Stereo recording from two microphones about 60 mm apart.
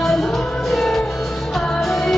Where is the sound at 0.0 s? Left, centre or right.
Centre.